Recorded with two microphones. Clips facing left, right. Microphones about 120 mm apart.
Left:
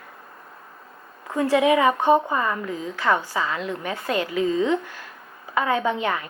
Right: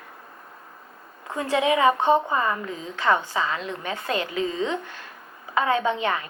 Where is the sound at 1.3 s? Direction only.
25° right (ahead or behind).